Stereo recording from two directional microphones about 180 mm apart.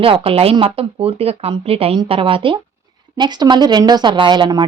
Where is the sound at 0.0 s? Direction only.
30° right (ahead or behind).